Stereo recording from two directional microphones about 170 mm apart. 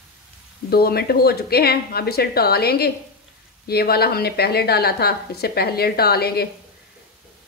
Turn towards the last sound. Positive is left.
turn(degrees=65)  # may be behind; listen again after turning